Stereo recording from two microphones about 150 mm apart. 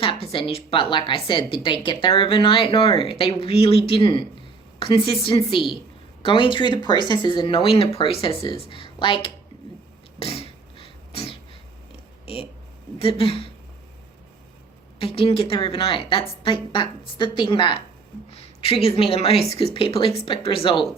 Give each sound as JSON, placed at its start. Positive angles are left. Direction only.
{"t": 0.0, "sound": "a woman's voice", "side_deg": 35}
{"t": 10.2, "sound": "beatboxing", "side_deg": 40}
{"t": 12.2, "sound": "a sound", "side_deg": 40}
{"t": 13.0, "sound": "a woman's voice", "side_deg": 40}
{"t": 14.9, "sound": "a woman's voice", "side_deg": 35}